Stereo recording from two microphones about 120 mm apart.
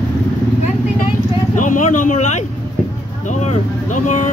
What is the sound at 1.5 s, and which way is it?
Speech, 90° left.